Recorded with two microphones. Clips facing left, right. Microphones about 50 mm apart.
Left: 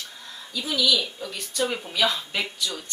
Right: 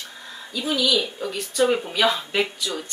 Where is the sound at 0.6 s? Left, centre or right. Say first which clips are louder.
Right 2 dB; centre.